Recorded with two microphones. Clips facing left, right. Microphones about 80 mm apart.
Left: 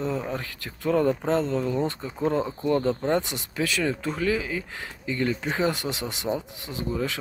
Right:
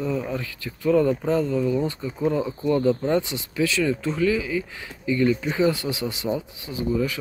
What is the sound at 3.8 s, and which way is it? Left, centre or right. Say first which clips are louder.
Speech: right 4 dB; left.